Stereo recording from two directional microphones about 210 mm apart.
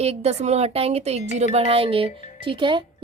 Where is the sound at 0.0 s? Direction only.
30° right (ahead or behind).